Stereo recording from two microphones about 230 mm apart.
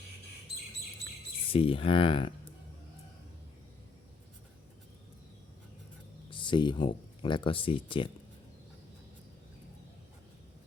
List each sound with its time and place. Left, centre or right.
1.5 s speech: left
6.3 s speech: left